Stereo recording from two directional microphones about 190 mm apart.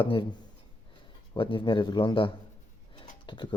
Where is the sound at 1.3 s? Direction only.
25° left (ahead or behind).